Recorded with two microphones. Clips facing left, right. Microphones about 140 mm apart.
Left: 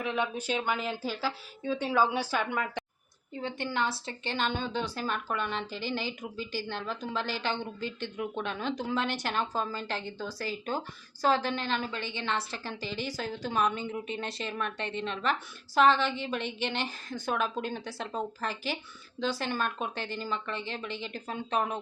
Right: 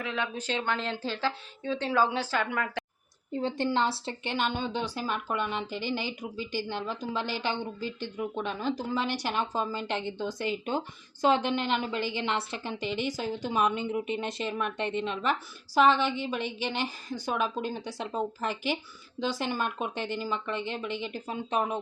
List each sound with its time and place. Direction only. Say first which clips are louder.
0.0 s speech: left 2 dB; 15° left (ahead or behind)
3.3 s speech: right 5 dB; 30° right (ahead or behind)
4.3 s a woman's voice: right 1 dB; 10° right (ahead or behind)